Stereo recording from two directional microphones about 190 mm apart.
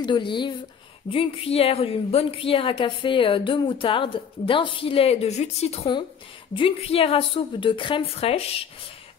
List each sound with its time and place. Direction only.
0.0 s a woman's voice: 25° left (ahead or behind)